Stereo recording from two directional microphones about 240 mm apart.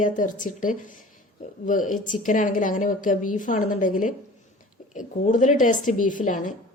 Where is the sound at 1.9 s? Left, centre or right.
Left.